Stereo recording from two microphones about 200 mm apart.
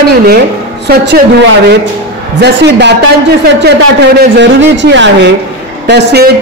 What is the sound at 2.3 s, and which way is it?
Speech, 55° right (ahead or behind).